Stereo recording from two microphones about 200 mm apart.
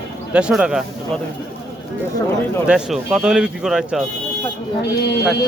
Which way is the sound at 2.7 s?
5° right (ahead or behind).